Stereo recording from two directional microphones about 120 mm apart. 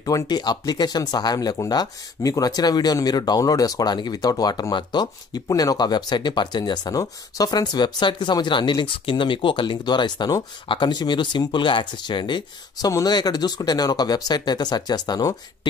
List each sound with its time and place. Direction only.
0.0 s speech: 30° left (ahead or behind)